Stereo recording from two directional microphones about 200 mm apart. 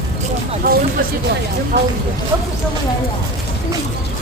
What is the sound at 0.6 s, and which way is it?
Speech, 50° right (ahead or behind).